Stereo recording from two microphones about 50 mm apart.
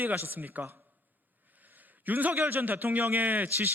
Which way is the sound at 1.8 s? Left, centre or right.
Right.